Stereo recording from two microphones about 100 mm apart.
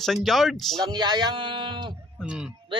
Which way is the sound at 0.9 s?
45° right (ahead or behind).